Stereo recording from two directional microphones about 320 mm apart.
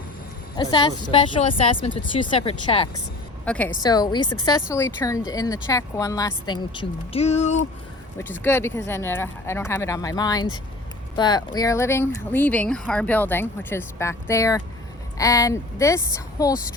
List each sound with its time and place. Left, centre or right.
0.5 s speech: centre
3.4 s speech: centre
8.2 s speech: centre